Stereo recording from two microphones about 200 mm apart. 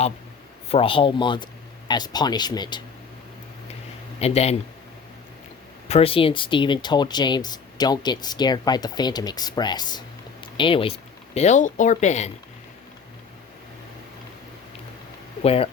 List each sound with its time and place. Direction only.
0.7 s speech: 25° left (ahead or behind)
4.2 s speech: 30° left (ahead or behind)
5.9 s speech: 30° left (ahead or behind)
11.3 s speech: 35° left (ahead or behind)
15.4 s speech: 30° left (ahead or behind)